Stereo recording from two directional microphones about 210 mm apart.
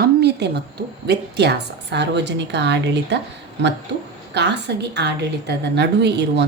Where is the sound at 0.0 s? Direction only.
50° right (ahead or behind).